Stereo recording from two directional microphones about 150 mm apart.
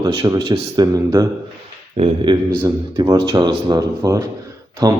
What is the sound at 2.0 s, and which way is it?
Speech, 40° right (ahead or behind).